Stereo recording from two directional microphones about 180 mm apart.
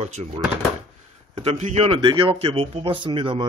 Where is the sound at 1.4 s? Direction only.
35° right (ahead or behind).